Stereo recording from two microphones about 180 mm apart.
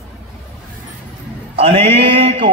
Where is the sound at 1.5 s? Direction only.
30° right (ahead or behind).